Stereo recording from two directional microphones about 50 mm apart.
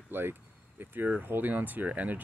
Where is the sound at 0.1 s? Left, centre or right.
Right.